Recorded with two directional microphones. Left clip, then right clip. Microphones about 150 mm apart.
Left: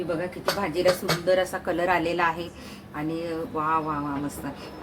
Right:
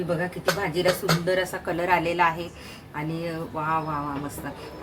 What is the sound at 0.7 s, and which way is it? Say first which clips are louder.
Speech: even; 15° left (ahead or behind).